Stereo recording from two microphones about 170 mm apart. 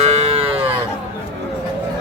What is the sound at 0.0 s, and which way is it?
Cattle, 40° right (ahead or behind).